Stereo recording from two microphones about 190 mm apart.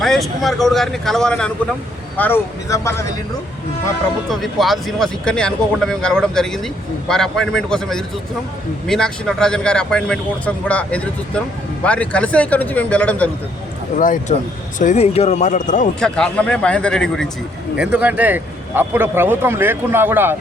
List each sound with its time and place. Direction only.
0.0 s speech: centre (ahead or behind)
4.3 s speech: centre (ahead or behind)
13.9 s speech: 45° left (ahead or behind)
16.0 s speech: 5° left (ahead or behind)
17.7 s a man's voice: 10° right (ahead or behind)